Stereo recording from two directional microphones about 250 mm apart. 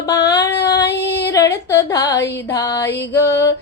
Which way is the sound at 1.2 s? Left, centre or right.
Centre.